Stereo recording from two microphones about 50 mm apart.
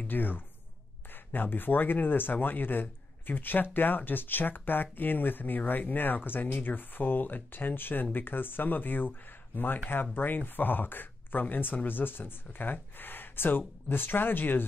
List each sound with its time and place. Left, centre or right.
0.1 s speech: left
10.1 s speech: left